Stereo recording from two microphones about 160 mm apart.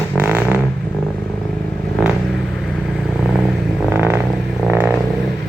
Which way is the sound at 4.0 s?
10° right (ahead or behind).